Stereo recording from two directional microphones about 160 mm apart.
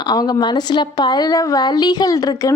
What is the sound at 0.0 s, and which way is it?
Speech, 25° left (ahead or behind).